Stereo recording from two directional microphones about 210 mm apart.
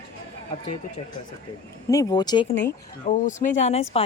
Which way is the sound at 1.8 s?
15° left (ahead or behind).